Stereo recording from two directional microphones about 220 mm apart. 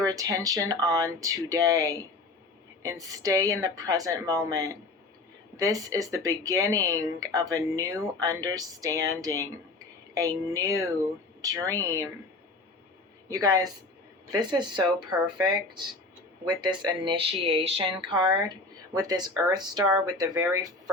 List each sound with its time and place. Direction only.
0.1 s speech: 15° right (ahead or behind)
13.3 s speech: 15° right (ahead or behind)